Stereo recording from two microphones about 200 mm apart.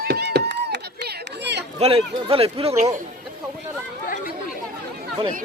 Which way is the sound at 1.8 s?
25° right (ahead or behind).